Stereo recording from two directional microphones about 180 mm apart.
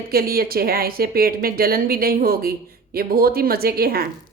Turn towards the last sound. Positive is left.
turn(degrees=-60)  # may be behind; listen again after turning